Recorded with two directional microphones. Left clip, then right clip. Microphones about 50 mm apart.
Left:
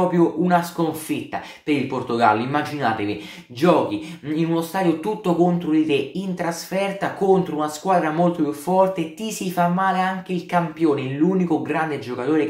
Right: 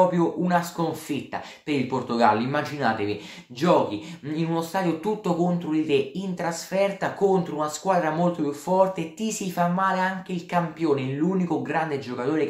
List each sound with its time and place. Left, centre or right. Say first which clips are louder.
0.1 s speech: left 5 dB; right
4.4 s speech: left 4 dB; right